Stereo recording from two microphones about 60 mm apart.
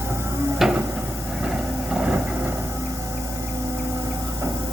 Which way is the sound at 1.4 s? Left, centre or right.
Centre.